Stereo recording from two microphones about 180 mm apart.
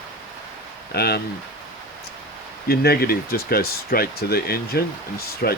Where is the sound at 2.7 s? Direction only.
60° left (ahead or behind).